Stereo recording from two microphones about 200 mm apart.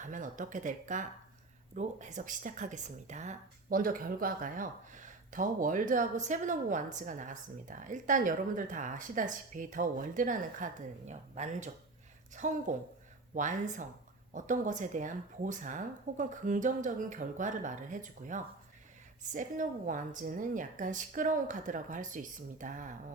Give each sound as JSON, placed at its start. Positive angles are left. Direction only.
{"t": 0.0, "sound": "speech", "side_deg": -40}